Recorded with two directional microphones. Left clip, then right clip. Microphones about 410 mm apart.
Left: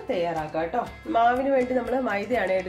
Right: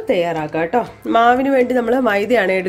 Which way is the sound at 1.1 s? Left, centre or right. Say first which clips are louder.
Right 8 dB; right.